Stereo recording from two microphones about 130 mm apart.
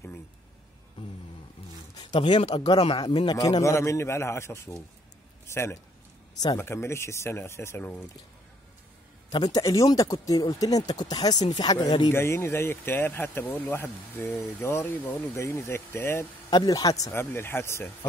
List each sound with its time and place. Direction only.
2.0 s a man's voice: 35° left (ahead or behind); by 8.0 s 15° left (ahead or behind)
9.3 s speech: 30° left (ahead or behind)
12.1 s speech: 20° left (ahead or behind)
16.4 s speech: 30° left (ahead or behind)